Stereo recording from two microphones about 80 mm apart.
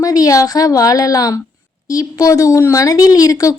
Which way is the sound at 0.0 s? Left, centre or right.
Left.